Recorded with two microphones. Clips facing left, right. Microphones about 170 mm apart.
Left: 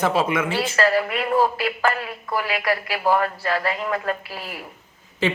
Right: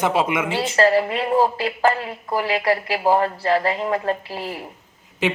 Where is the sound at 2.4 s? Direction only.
30° right (ahead or behind).